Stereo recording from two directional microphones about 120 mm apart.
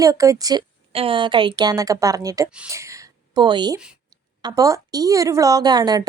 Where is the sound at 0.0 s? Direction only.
30° right (ahead or behind).